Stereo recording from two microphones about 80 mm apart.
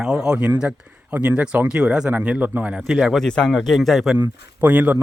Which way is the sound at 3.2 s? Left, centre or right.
Centre.